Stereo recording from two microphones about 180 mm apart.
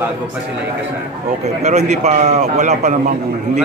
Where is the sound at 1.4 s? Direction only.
40° right (ahead or behind).